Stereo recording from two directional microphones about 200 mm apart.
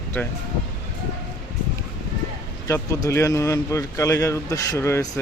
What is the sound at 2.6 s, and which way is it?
Speech, 15° left (ahead or behind).